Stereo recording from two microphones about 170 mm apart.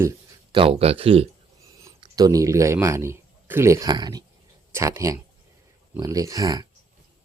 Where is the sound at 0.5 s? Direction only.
35° right (ahead or behind).